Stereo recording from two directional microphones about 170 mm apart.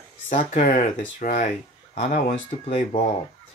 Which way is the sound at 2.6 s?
50° left (ahead or behind).